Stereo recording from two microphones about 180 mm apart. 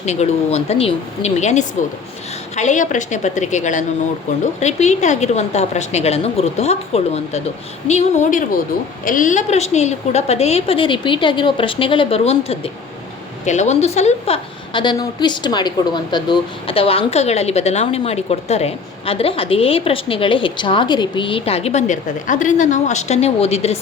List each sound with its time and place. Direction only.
0.0 s a woman's voice: 40° left (ahead or behind)